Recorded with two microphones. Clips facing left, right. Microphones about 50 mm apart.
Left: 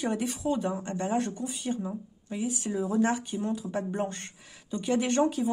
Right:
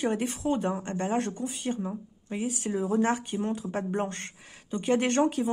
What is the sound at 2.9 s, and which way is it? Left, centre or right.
A woman's voice, right.